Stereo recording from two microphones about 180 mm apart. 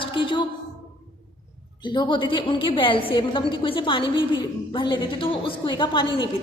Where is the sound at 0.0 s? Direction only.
25° left (ahead or behind).